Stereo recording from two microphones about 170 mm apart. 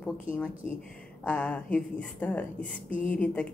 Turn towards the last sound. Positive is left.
turn(degrees=5)  # may be behind; listen again after turning